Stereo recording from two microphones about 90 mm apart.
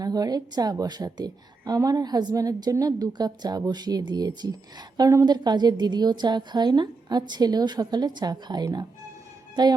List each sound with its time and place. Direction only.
0.0 s a woman's voice: 45° right (ahead or behind)